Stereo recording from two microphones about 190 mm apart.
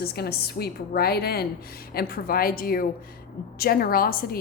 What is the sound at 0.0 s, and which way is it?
A woman's voice, 55° left (ahead or behind).